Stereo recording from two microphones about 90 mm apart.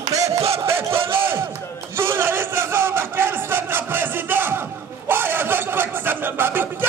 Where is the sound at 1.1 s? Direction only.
25° right (ahead or behind).